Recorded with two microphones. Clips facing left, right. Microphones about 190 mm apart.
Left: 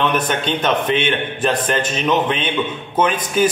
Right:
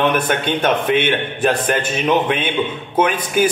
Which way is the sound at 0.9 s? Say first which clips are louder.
Right 2 dB; 10° right (ahead or behind).